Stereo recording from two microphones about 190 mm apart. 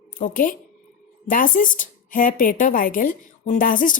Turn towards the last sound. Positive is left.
turn(degrees=45)  # may be behind; listen again after turning